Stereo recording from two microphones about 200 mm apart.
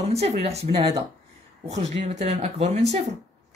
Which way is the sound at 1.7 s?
35° right (ahead or behind).